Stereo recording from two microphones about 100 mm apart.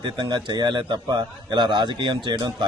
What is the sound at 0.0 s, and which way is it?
A man's voice, 50° right (ahead or behind).